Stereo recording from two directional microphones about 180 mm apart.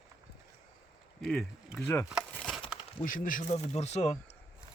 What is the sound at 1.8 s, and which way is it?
Wood, 15° left (ahead or behind).